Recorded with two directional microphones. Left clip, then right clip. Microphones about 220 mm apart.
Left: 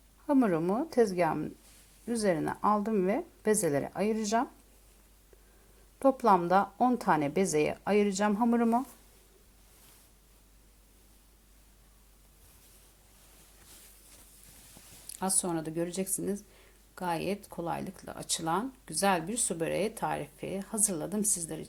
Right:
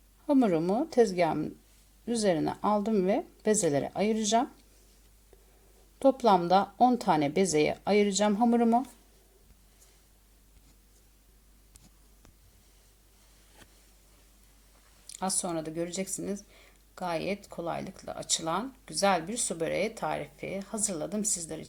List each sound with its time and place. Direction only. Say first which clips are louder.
0.3 s speech: right 2 dB; 5° left (ahead or behind)
6.0 s speech: right 1 dB; 5° left (ahead or behind)
7.2 s speech: right 2 dB; 5° right (ahead or behind)
15.1 s speech: right 1 dB; 20° left (ahead or behind)